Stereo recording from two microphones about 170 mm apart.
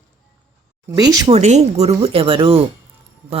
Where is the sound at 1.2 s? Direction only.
40° right (ahead or behind).